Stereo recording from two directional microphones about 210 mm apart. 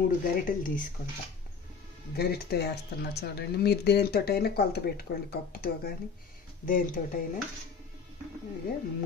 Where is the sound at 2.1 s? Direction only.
50° left (ahead or behind).